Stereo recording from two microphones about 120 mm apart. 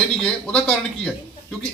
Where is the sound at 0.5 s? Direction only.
10° left (ahead or behind).